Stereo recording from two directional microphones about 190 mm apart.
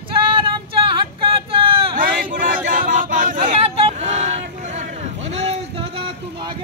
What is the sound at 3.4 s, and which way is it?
Hubbub, 30° right (ahead or behind).